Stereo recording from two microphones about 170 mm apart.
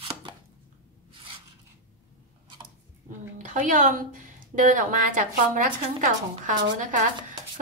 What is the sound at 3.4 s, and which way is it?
A woman's voice, 50° right (ahead or behind).